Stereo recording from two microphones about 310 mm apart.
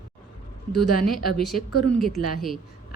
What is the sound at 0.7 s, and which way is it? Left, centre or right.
Speech, centre.